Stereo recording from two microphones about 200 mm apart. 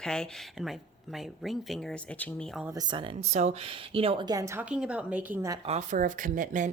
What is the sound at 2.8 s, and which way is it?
Speech, 20° right (ahead or behind).